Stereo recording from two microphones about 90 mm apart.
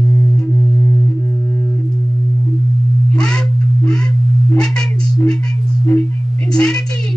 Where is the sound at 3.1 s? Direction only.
5° left (ahead or behind).